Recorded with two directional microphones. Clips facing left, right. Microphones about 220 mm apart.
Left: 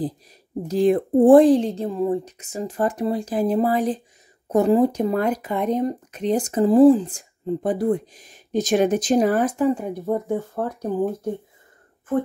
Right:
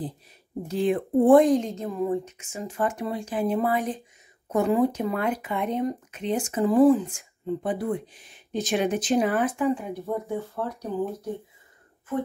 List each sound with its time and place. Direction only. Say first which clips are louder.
0.7 s speech: left 6 dB; 40° left (ahead or behind)